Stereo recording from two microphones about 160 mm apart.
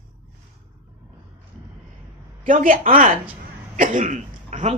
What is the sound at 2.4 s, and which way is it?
A woman's voice, 55° right (ahead or behind).